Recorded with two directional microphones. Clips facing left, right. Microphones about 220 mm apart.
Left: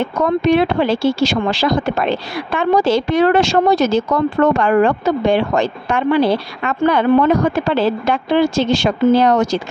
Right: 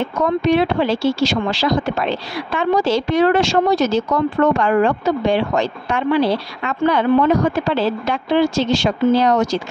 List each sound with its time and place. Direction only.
0.2 s speech: 55° left (ahead or behind)